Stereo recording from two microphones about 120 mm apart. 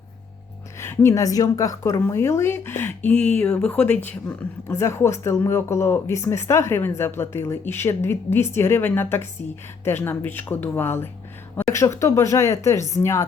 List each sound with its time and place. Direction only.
0.8 s speech: 20° left (ahead or behind)